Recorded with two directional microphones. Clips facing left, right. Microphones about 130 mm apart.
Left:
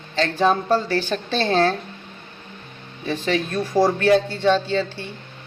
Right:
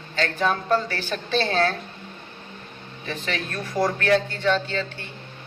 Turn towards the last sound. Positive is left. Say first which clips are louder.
# left 5 dB
turn(degrees=25)  # may be behind; listen again after turning